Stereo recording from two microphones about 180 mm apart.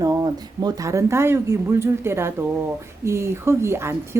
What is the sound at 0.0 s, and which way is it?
Speech, 20° right (ahead or behind).